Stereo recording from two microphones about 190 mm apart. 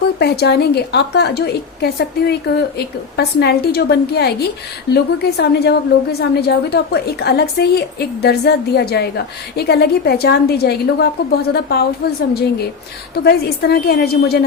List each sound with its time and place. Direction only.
0.2 s a woman's voice: 60° left (ahead or behind)
13.1 s a woman's voice: 55° left (ahead or behind)